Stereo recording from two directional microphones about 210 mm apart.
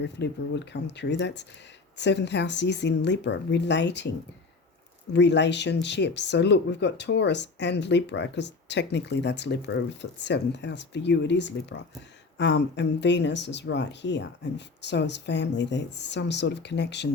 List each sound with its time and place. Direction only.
0.0 s speech: 55° left (ahead or behind)
5.1 s speech: 55° left (ahead or behind)